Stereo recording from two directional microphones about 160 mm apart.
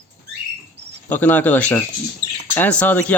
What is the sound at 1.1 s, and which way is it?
Speech, 10° left (ahead or behind).